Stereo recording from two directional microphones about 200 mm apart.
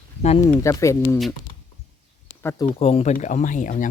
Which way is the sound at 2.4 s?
10° left (ahead or behind).